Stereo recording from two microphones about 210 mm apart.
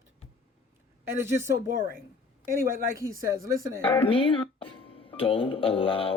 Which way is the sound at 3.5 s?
15° right (ahead or behind).